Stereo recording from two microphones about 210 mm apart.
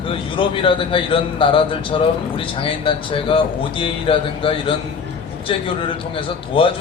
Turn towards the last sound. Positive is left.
turn(degrees=25)  # may be behind; listen again after turning